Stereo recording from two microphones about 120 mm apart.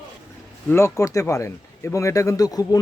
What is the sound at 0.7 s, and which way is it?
Speech, 20° left (ahead or behind).